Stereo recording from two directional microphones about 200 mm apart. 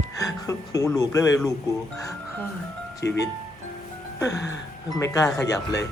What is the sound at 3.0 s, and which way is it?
Speech, 55° left (ahead or behind).